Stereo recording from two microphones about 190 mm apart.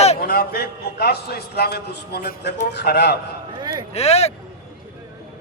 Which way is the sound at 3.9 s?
35° left (ahead or behind).